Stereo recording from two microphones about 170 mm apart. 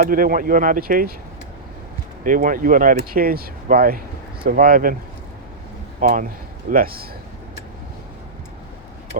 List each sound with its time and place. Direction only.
0.0 s speech: 60° right (ahead or behind)
2.2 s speech: 50° right (ahead or behind)
6.0 s speech: 55° right (ahead or behind)